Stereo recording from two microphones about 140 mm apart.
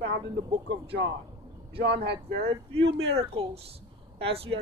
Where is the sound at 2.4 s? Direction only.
45° right (ahead or behind).